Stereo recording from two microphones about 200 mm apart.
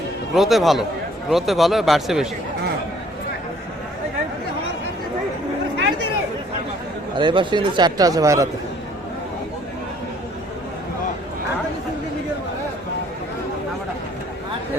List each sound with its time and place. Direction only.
0.3 s speech: centre (ahead or behind)
7.2 s speech: 25° right (ahead or behind)